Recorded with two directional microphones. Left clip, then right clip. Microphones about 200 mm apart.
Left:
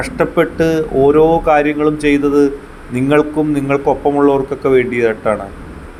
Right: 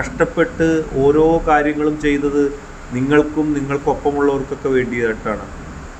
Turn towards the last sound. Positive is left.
turn(degrees=20)  # may be behind; listen again after turning